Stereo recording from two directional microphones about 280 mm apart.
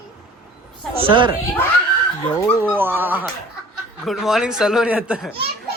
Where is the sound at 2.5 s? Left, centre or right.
Centre.